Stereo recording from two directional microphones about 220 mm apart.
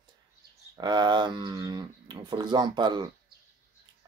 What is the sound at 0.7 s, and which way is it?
Speech, 20° right (ahead or behind).